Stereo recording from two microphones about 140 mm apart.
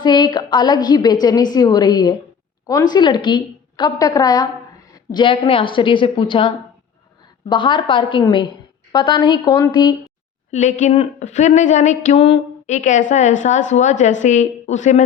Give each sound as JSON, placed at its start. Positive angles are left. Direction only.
{"t": 0.0, "sound": "a woman's voice", "side_deg": 30}
{"t": 7.5, "sound": "a woman's voice", "side_deg": 35}
{"t": 10.5, "sound": "speech", "side_deg": 55}